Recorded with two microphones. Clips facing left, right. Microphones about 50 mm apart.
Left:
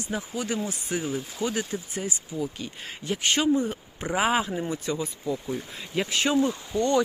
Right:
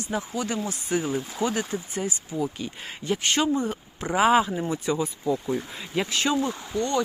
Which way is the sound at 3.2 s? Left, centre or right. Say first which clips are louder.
Left 2 dB; centre.